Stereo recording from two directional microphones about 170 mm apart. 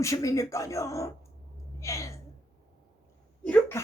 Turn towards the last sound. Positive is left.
turn(degrees=10)  # may be behind; listen again after turning